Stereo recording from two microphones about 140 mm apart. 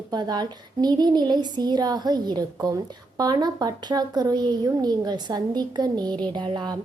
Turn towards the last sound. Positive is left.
turn(degrees=-30)  # may be behind; listen again after turning